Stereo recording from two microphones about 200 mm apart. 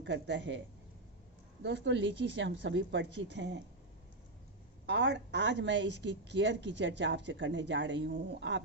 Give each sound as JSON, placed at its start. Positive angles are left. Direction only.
{"t": 0.0, "sound": "a woman's voice", "side_deg": -65}
{"t": 1.6, "sound": "a woman's voice", "side_deg": -65}
{"t": 4.9, "sound": "a woman's voice", "side_deg": -60}